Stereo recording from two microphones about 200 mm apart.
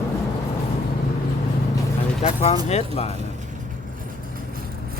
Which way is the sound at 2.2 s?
30° left (ahead or behind).